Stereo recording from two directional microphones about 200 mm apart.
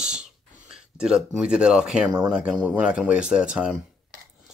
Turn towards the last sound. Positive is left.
turn(degrees=-5)  # may be behind; listen again after turning